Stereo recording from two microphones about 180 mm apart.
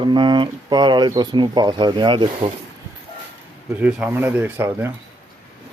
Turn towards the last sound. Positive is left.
turn(degrees=-10)  # may be behind; listen again after turning